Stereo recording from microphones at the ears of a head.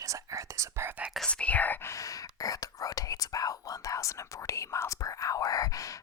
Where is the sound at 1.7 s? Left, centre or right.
Left.